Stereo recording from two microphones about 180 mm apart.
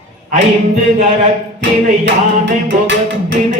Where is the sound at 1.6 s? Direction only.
90° right.